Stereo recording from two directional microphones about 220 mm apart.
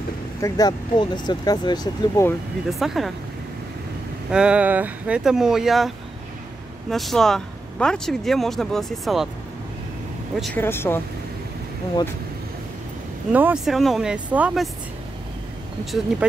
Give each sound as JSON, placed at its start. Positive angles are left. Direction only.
{"t": 0.4, "sound": "speech", "side_deg": 15}
{"t": 2.7, "sound": "speech", "side_deg": 0}
{"t": 4.3, "sound": "speech", "side_deg": -5}
{"t": 10.4, "sound": "speech", "side_deg": 10}
{"t": 13.3, "sound": "speech", "side_deg": -5}
{"t": 15.8, "sound": "speech", "side_deg": 0}